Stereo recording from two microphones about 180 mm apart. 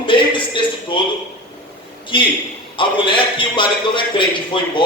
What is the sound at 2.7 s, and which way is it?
A man's voice, 25° left (ahead or behind).